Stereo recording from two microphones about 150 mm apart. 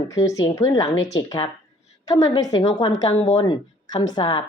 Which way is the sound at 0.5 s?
25° left (ahead or behind).